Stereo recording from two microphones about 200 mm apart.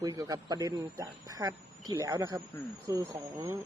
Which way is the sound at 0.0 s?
20° right (ahead or behind).